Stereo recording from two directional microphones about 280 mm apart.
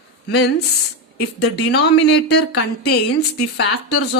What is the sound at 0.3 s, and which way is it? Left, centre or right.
A woman's voice, left.